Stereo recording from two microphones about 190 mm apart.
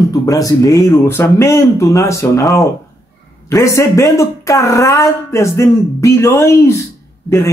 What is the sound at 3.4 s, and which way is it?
Speech, 15° left (ahead or behind).